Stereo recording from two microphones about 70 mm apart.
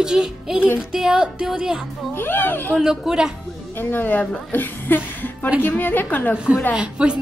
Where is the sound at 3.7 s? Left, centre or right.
Left.